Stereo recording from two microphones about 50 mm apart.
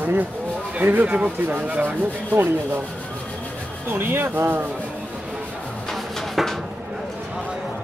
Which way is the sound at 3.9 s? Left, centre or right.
Right.